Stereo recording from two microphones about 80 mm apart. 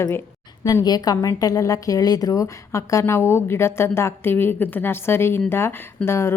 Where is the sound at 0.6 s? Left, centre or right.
Left.